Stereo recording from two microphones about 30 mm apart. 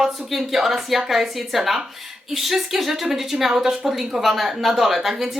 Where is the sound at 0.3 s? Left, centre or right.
Centre.